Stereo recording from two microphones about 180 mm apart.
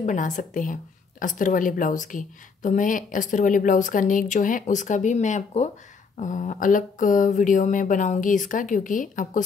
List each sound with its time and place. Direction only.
0.0 s a woman's voice: 45° left (ahead or behind)